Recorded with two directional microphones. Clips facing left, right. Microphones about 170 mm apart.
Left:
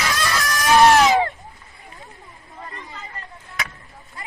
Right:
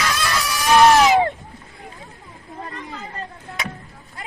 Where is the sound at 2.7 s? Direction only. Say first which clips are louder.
Right 5 dB; 90° right.